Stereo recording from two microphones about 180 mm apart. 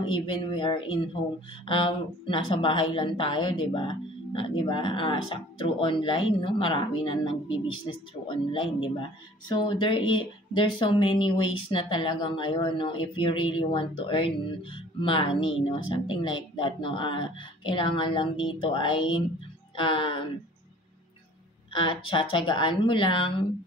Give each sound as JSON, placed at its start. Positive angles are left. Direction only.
{"t": 0.0, "sound": "speech", "side_deg": 30}
{"t": 21.7, "sound": "speech", "side_deg": 30}